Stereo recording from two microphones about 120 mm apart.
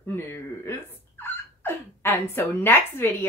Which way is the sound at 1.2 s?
20° left (ahead or behind).